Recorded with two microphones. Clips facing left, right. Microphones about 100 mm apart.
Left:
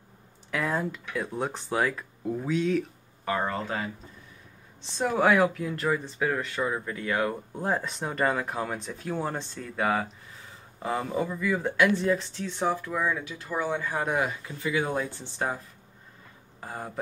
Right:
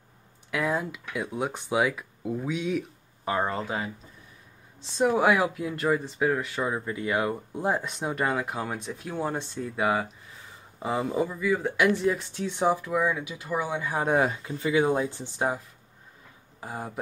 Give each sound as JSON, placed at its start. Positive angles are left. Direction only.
{"t": 0.5, "sound": "speech", "side_deg": -5}
{"t": 4.9, "sound": "speech", "side_deg": -10}
{"t": 11.7, "sound": "speech", "side_deg": -15}
{"t": 14.0, "sound": "speech", "side_deg": -30}
{"t": 16.6, "sound": "speech", "side_deg": -10}